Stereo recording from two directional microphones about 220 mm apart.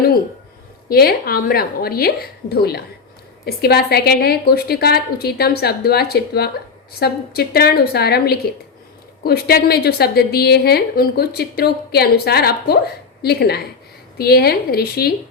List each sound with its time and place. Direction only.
0.9 s a woman's voice: 45° left (ahead or behind)